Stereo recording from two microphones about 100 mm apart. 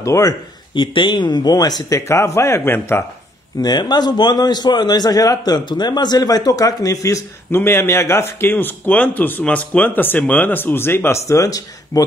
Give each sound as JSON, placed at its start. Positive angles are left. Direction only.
{"t": 0.0, "sound": "a man's voice", "side_deg": 35}
{"t": 0.7, "sound": "speech", "side_deg": 55}
{"t": 2.0, "sound": "speech", "side_deg": 30}
{"t": 3.6, "sound": "a man's voice", "side_deg": 45}